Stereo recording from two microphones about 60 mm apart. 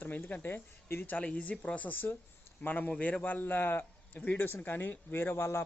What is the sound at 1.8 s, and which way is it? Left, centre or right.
A man's voice, left.